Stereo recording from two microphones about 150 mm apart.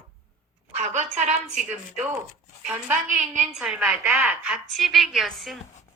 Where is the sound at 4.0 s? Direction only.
20° right (ahead or behind).